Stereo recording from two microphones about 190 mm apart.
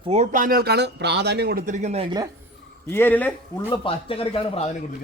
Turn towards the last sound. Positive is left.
turn(degrees=30)  # may be behind; listen again after turning